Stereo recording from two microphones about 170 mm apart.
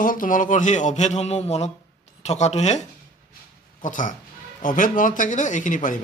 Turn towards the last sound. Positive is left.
turn(degrees=50)  # may be behind; listen again after turning